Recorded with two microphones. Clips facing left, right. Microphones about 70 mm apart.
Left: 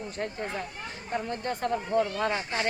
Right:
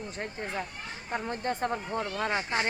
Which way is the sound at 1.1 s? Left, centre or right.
Right.